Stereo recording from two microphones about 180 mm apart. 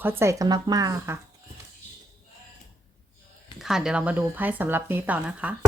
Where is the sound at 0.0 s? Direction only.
15° right (ahead or behind).